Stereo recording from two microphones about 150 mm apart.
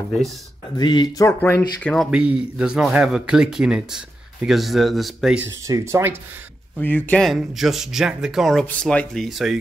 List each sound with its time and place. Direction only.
0.7 s speech: 30° left (ahead or behind)
1.4 s speech: 10° left (ahead or behind)
2.0 s a man's voice: 5° right (ahead or behind)
5.7 s speech: 20° right (ahead or behind)
6.8 s a man's voice: 10° left (ahead or behind)